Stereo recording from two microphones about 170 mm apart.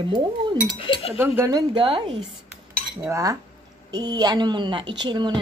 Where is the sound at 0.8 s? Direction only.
35° left (ahead or behind).